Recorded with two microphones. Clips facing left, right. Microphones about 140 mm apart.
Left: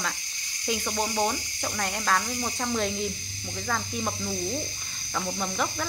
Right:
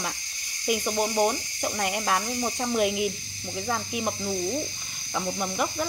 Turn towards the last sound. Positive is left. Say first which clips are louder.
# right 2 dB
turn(degrees=-15)  # may be behind; listen again after turning